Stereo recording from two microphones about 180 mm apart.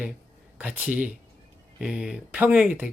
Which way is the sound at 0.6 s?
10° right (ahead or behind).